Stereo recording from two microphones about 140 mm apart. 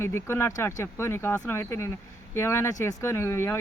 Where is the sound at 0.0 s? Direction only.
20° left (ahead or behind).